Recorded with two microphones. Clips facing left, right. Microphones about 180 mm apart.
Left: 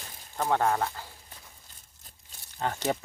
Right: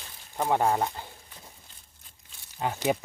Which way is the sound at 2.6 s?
10° right (ahead or behind).